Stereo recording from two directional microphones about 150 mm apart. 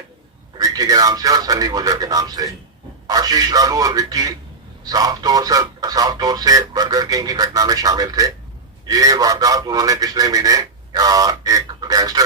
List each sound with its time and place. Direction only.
0.6 s speech: 25° right (ahead or behind)